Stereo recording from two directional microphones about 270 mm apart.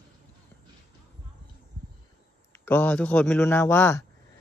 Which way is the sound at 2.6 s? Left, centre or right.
Centre.